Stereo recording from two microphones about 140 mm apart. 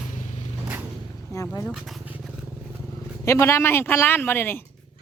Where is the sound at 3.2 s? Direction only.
20° left (ahead or behind).